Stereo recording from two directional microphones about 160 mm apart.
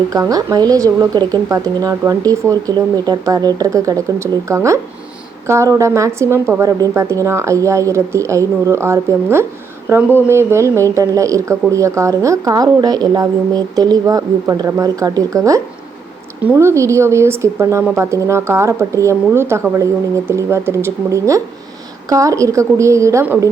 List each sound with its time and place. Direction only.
0.1 s a woman's voice: 20° right (ahead or behind)